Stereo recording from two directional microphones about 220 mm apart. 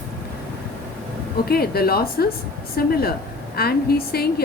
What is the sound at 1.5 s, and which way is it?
A woman's voice, 45° left (ahead or behind).